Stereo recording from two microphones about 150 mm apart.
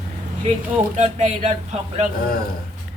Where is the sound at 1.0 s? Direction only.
50° right (ahead or behind).